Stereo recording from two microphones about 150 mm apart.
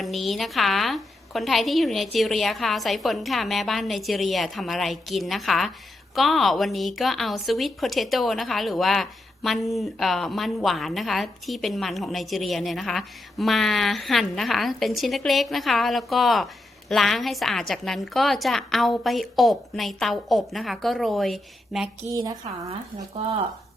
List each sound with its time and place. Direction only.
0.0 s a woman's voice: centre (ahead or behind)
22.1 s a woman's voice: 20° right (ahead or behind)